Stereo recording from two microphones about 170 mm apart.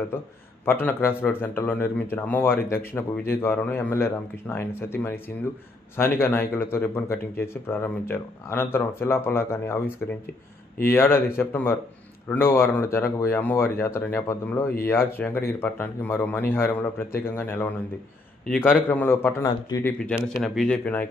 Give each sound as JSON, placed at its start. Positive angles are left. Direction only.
{"t": 0.1, "sound": "a man's voice", "side_deg": 15}
{"t": 18.9, "sound": "a man's voice", "side_deg": 10}
{"t": 20.2, "sound": "a man's voice", "side_deg": 0}